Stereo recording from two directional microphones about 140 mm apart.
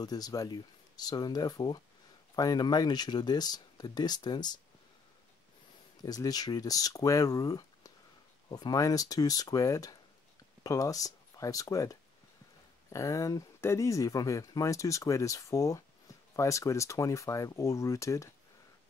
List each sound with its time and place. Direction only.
0.0 s speech: 30° left (ahead or behind)
6.0 s speech: 25° left (ahead or behind)